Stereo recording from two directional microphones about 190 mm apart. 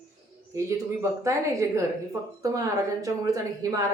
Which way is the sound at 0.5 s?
15° right (ahead or behind).